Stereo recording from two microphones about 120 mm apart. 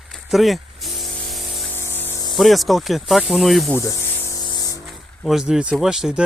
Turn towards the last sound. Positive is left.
turn(degrees=-5)  # may be behind; listen again after turning